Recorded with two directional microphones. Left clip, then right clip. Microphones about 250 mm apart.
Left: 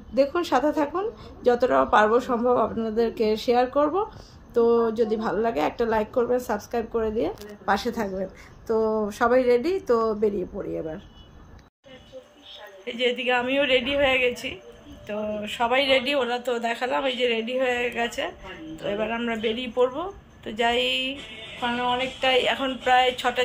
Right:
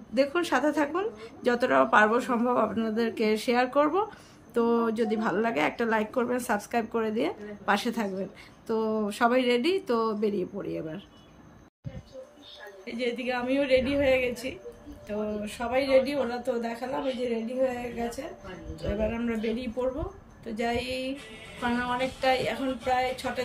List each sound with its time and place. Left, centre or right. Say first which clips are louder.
0.1 s speech: left 4 dB; centre
12.8 s speech: left 6 dB; centre
16.7 s a man's voice: left 7 dB; left
18.9 s a woman's voice: left 3 dB; centre